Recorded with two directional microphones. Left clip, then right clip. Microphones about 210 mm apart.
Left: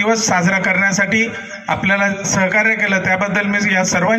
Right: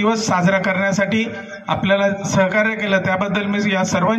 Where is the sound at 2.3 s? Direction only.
45° right (ahead or behind).